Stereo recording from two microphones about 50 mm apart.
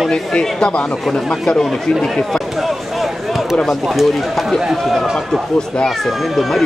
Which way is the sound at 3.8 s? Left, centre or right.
Centre.